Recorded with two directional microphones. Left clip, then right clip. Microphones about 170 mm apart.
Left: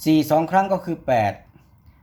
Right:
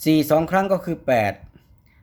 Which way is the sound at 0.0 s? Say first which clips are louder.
Even; 30° right (ahead or behind).